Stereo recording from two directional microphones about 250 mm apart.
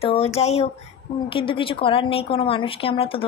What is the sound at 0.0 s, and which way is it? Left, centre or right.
A woman's voice, left.